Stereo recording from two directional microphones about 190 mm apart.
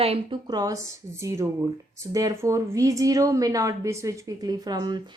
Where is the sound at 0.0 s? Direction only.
30° right (ahead or behind).